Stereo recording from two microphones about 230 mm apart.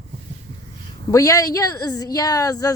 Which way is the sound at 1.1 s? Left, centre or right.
Centre.